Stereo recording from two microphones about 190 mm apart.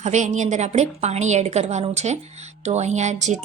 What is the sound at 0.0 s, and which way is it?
Speech, 40° right (ahead or behind).